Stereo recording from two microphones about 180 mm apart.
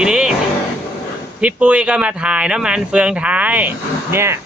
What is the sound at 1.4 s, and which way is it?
Speech, 5° right (ahead or behind).